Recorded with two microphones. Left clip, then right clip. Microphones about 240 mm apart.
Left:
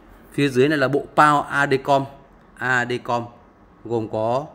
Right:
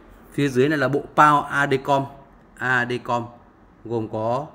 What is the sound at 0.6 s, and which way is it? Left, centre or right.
A man's voice, centre.